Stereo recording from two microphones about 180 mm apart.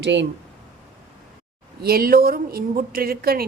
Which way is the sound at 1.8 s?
55° right (ahead or behind).